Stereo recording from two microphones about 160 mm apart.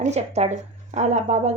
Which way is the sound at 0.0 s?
45° right (ahead or behind).